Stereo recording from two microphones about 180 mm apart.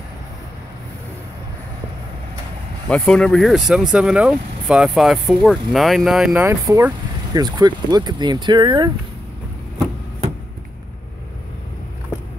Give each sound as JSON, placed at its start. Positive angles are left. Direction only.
{"t": 2.9, "sound": "speech", "side_deg": 5}
{"t": 6.4, "sound": "speech", "side_deg": -15}